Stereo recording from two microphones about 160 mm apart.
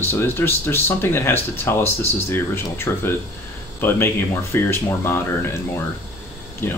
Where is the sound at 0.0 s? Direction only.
15° left (ahead or behind).